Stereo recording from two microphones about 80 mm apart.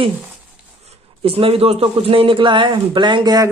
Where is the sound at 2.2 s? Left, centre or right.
Right.